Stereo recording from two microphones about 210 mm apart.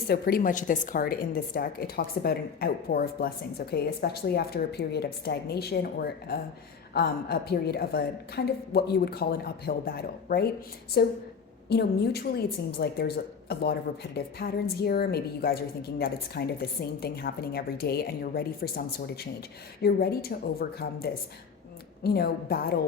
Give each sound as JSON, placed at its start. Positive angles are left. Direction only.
{"t": 0.1, "sound": "a woman's voice", "side_deg": 45}